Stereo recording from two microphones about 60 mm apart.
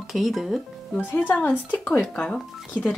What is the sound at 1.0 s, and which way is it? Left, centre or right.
Speech, left.